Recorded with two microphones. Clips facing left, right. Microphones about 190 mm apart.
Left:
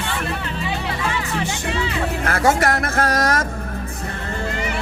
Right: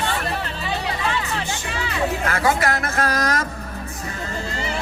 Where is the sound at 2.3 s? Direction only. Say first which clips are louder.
Left 6 dB; 50° left (ahead or behind).